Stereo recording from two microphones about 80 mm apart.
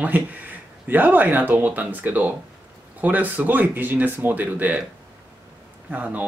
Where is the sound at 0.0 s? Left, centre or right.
Centre.